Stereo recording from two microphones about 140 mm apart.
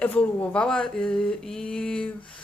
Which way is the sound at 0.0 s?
10° left (ahead or behind).